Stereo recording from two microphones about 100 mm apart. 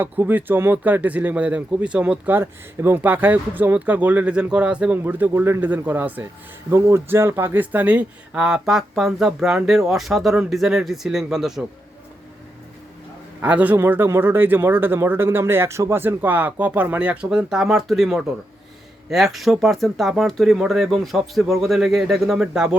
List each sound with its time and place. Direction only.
0.0 s speech: 20° right (ahead or behind); by 11.6 s 5° right (ahead or behind)
13.4 s speech: 15° right (ahead or behind)